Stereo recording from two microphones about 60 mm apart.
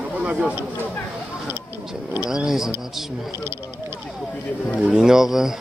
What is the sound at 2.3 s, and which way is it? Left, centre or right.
Speech, centre.